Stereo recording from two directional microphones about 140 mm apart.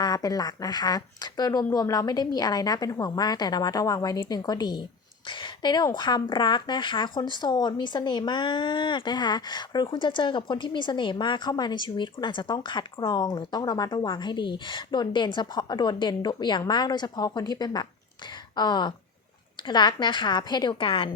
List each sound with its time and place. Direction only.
0.0 s speech: 25° left (ahead or behind)